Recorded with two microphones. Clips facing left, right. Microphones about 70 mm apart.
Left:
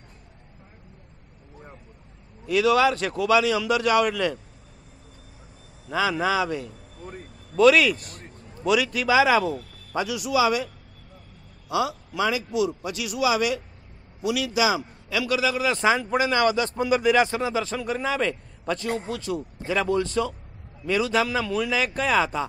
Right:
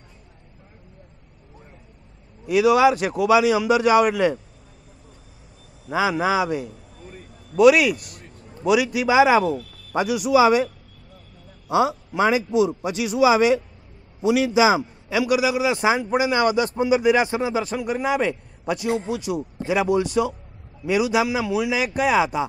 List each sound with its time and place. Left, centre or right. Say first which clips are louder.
2.4 s a man's voice: right 4 dB; centre
5.9 s a man's voice: right 3 dB; centre
11.7 s a man's voice: right 5 dB; right; by 22.5 s centre